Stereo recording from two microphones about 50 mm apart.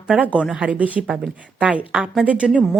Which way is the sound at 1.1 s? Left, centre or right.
Centre.